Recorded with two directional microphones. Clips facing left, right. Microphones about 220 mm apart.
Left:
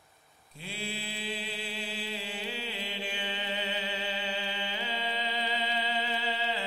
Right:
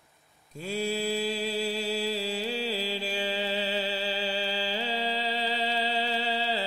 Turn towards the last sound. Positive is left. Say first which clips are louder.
# right 4 dB
turn(degrees=-35)  # may be behind; listen again after turning